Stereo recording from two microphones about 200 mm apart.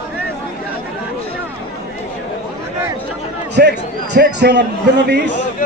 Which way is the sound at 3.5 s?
55° right (ahead or behind).